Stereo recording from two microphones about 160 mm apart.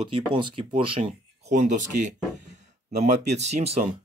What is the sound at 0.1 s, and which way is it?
Speech, 30° right (ahead or behind).